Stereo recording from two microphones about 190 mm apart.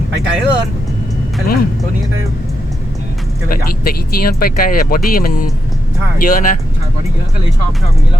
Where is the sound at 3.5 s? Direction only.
50° left (ahead or behind).